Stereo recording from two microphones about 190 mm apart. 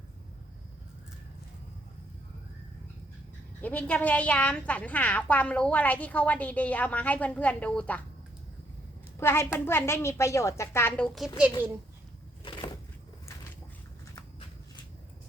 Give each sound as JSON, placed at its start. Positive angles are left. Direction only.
{"t": 3.6, "sound": "a woman's voice", "side_deg": 10}
{"t": 9.2, "sound": "a woman's voice", "side_deg": 15}
{"t": 12.5, "sound": "a sound", "side_deg": 25}